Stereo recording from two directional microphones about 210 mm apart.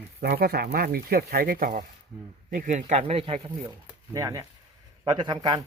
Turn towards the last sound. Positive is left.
turn(degrees=-20)  # may be behind; listen again after turning